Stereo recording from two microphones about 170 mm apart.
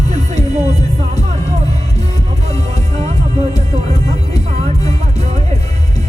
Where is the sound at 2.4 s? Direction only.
40° right (ahead or behind).